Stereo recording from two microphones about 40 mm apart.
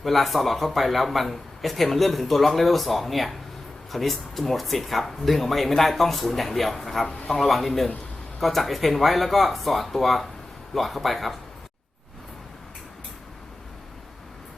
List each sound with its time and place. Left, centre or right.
0.0 s speech: centre